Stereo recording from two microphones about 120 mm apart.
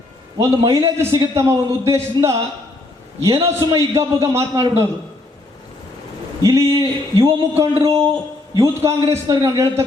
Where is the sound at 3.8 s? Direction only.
25° right (ahead or behind).